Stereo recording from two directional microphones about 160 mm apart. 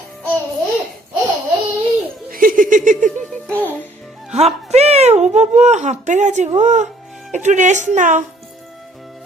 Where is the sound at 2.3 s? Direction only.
60° right (ahead or behind).